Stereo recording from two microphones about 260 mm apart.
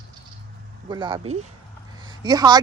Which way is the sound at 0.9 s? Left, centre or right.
Centre.